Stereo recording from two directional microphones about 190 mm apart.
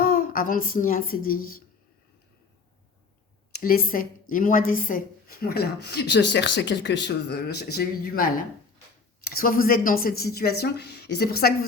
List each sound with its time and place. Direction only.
0.0 s speech: 50° left (ahead or behind)
3.5 s speech: 50° left (ahead or behind)